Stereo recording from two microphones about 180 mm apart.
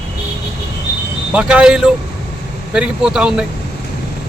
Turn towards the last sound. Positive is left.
turn(degrees=-5)  # may be behind; listen again after turning